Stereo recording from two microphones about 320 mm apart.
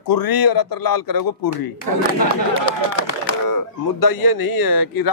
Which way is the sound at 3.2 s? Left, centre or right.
Left.